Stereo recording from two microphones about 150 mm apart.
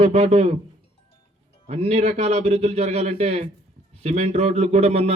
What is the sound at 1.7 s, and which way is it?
A man's voice, 45° right (ahead or behind).